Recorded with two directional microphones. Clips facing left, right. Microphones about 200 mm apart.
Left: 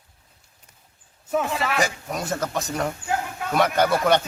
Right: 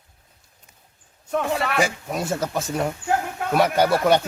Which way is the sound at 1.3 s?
5° left (ahead or behind).